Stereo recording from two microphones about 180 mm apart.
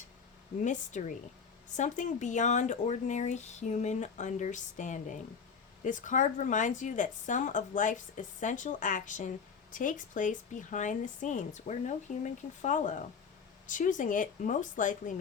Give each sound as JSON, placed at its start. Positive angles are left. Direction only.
{"t": 0.6, "sound": "a woman's voice", "side_deg": 45}